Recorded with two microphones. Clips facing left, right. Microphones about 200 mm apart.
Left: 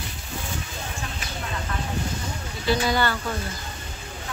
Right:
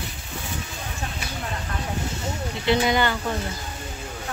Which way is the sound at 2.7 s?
20° right (ahead or behind).